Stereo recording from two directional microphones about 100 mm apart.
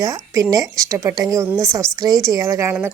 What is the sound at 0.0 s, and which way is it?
Speech, 40° right (ahead or behind).